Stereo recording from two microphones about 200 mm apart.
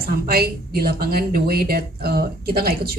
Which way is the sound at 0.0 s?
50° right (ahead or behind).